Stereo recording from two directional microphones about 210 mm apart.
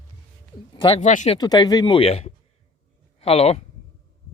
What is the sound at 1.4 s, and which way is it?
Speech, 20° left (ahead or behind).